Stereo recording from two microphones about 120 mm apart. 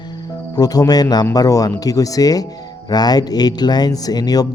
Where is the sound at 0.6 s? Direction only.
30° left (ahead or behind).